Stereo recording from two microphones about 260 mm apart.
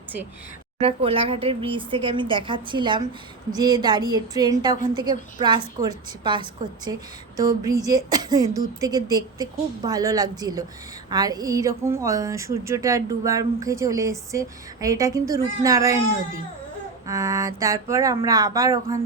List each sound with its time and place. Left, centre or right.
0.8 s a woman's voice: right
17.1 s a woman's voice: centre